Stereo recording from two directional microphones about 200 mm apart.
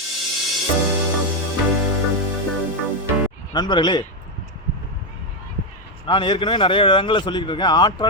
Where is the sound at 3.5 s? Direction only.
20° left (ahead or behind).